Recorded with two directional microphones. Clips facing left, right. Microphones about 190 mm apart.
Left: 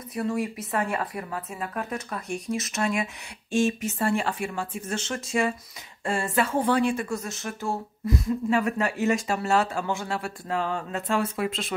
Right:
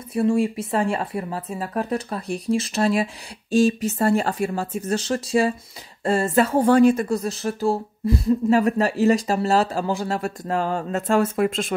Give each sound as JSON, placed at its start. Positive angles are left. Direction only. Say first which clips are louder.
{"t": 0.1, "sound": "speech", "louder": "right 8 dB", "side_deg": -25}